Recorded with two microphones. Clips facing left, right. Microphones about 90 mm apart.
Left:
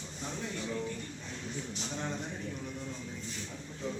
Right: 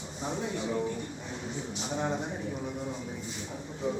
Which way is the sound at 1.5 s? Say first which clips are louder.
Right 4 dB; 20° right (ahead or behind).